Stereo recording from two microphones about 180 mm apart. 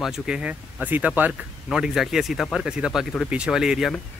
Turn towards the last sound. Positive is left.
turn(degrees=0)  # may be behind; listen again after turning